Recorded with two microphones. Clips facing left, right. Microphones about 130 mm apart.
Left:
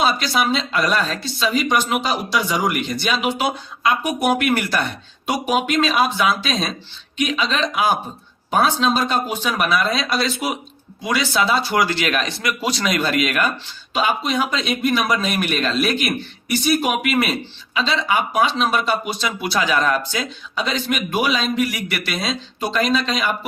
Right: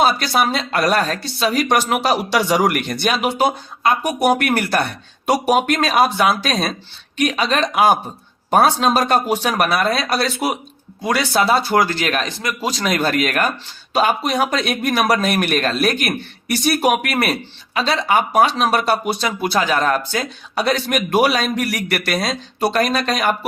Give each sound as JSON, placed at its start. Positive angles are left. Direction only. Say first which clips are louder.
{"t": 0.2, "sound": "speech", "louder": "right 2 dB", "side_deg": -55}
{"t": 5.2, "sound": "speech", "louder": "right 4 dB", "side_deg": -40}
{"t": 8.6, "sound": "speech", "louder": "right 1 dB", "side_deg": -55}
{"t": 15.0, "sound": "a man's voice", "louder": "right 4 dB", "side_deg": -40}
{"t": 15.3, "sound": "speech", "louder": "right 3 dB", "side_deg": -55}
{"t": 19.4, "sound": "speech", "louder": "right 1 dB", "side_deg": -45}